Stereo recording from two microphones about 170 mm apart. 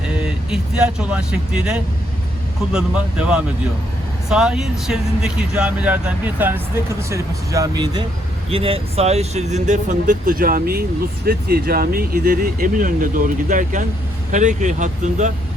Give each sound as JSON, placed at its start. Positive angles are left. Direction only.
{"t": 0.5, "sound": "speech", "side_deg": -5}
{"t": 8.4, "sound": "speech", "side_deg": -35}